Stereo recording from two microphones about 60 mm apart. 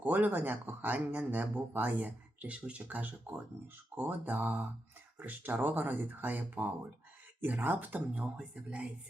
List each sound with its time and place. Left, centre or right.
0.0 s speech: right